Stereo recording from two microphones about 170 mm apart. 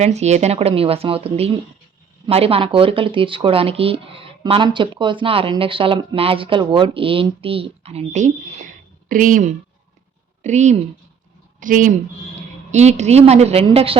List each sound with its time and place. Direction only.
0.0 s speech: 40° right (ahead or behind)
10.4 s a woman's voice: 45° right (ahead or behind)